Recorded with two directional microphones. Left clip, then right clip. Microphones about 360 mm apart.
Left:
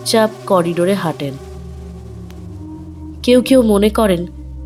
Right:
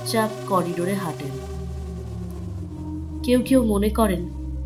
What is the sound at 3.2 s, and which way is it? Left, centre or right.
Speech, left.